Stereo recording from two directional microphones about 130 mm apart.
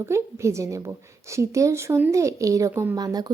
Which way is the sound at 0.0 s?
20° right (ahead or behind).